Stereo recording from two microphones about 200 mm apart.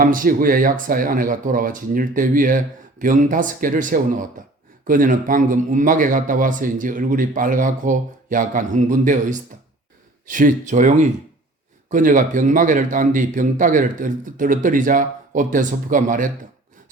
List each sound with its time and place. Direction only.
0.0 s speech: 45° right (ahead or behind)